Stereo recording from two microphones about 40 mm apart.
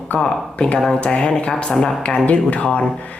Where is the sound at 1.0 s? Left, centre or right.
Left.